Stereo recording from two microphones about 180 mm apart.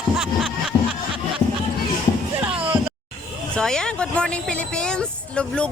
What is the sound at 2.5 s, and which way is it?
Music, 30° right (ahead or behind).